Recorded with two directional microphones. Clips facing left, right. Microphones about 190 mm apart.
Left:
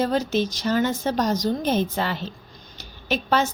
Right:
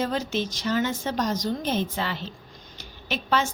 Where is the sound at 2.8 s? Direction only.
40° left (ahead or behind).